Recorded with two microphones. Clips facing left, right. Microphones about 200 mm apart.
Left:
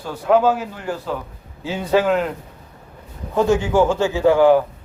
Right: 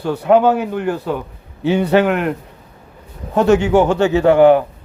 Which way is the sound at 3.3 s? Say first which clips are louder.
Right 5 dB; 70° right (ahead or behind).